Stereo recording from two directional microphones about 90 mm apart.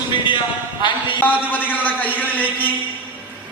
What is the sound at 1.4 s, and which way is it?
A man's voice, 20° left (ahead or behind).